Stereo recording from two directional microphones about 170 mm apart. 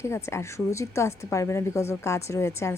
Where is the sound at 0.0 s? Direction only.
15° left (ahead or behind).